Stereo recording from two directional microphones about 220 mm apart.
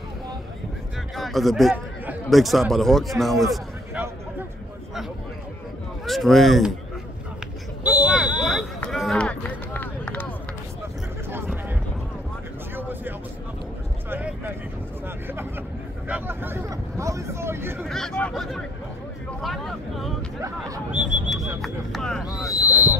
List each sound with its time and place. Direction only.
1.1 s speech: centre (ahead or behind)
6.0 s speech: centre (ahead or behind)
7.8 s a sound: 5° right (ahead or behind)
12.7 s vehicle: 10° right (ahead or behind)
14.1 s vehicle: 10° right (ahead or behind)
16.1 s vehicle: 10° right (ahead or behind)
17.8 s hubbub: centre (ahead or behind)
19.4 s vehicle: centre (ahead or behind)
20.4 s a sound: 10° right (ahead or behind)
21.5 s vehicle: centre (ahead or behind)
22.6 s vehicle: 15° left (ahead or behind)